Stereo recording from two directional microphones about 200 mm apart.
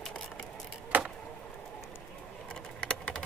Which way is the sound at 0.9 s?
10° right (ahead or behind).